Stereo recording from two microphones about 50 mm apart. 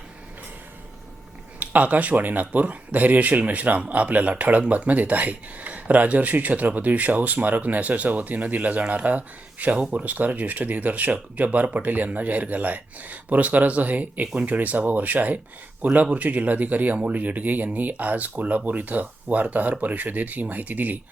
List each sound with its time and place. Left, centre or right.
1.5 s speech: right